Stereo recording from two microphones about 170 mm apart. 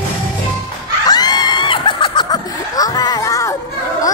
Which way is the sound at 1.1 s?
25° left (ahead or behind).